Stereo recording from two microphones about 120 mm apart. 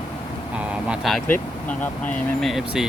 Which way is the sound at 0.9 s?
Centre (ahead or behind).